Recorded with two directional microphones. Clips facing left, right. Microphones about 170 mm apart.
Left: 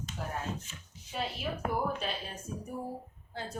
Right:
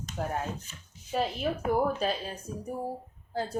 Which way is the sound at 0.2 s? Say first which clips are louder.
Right 7 dB; 50° right (ahead or behind).